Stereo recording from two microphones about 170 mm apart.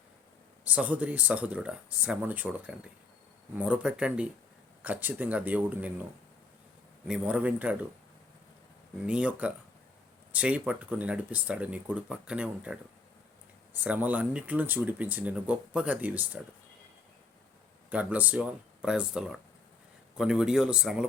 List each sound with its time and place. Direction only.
0.6 s speech: 10° right (ahead or behind)
7.1 s speech: 5° right (ahead or behind)
9.0 s speech: 5° right (ahead or behind)
13.8 s speech: 10° right (ahead or behind)
17.9 s speech: 10° right (ahead or behind)